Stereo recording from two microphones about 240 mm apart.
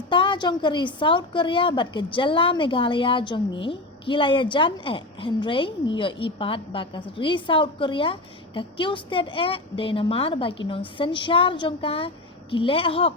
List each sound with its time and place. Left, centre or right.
0.1 s a woman's voice: centre